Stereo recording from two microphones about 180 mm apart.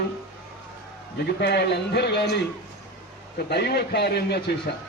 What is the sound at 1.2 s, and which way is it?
A man's voice, 70° left (ahead or behind).